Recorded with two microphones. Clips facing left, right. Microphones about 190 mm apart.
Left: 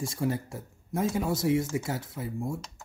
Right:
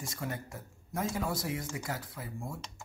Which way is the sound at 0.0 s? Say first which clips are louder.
Left 9 dB; 30° left (ahead or behind).